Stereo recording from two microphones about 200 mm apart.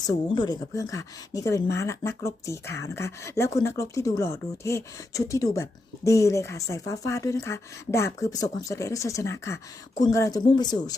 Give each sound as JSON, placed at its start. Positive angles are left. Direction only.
{"t": 0.0, "sound": "speech", "side_deg": 20}